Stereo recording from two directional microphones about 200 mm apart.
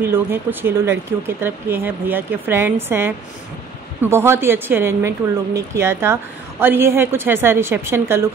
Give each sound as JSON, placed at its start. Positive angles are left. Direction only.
{"t": 0.0, "sound": "speech", "side_deg": -10}